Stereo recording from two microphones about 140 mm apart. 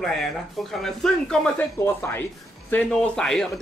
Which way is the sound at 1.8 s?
20° left (ahead or behind).